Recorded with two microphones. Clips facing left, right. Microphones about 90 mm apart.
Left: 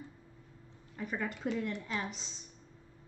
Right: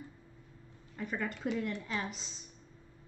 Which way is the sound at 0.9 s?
5° left (ahead or behind).